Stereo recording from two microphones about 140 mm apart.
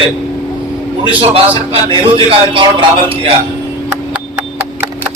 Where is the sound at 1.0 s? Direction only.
45° right (ahead or behind).